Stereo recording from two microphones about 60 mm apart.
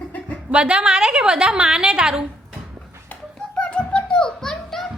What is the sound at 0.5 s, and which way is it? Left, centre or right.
A woman's voice, centre.